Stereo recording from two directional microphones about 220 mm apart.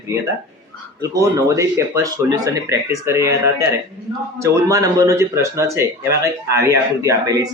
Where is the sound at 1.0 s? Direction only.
15° right (ahead or behind).